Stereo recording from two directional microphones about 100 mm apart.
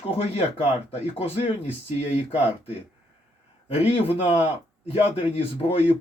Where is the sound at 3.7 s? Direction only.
90° left.